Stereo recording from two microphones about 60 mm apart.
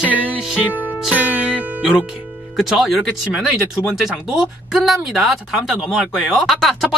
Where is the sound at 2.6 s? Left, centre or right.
Centre.